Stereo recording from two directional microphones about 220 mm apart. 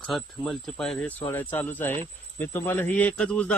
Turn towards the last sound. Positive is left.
turn(degrees=5)  # may be behind; listen again after turning